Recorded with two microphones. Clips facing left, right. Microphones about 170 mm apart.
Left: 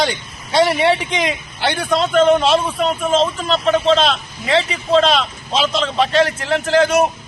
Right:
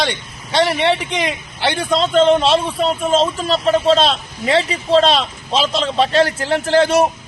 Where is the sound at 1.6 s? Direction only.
20° right (ahead or behind).